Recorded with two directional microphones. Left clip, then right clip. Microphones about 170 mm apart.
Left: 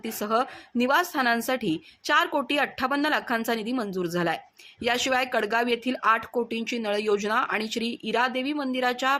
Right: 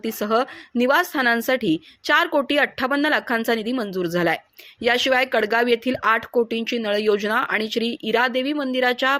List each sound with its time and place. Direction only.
0.0 s speech: 25° right (ahead or behind)